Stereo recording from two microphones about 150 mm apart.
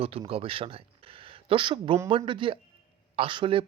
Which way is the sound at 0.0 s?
40° right (ahead or behind).